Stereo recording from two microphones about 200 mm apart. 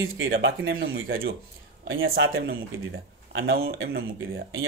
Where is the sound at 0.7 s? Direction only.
50° right (ahead or behind).